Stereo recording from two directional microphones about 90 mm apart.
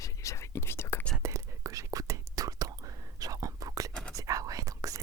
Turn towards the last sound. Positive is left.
turn(degrees=-40)  # may be behind; listen again after turning